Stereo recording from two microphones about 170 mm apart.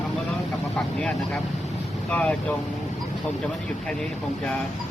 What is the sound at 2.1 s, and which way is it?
Speech, 5° left (ahead or behind).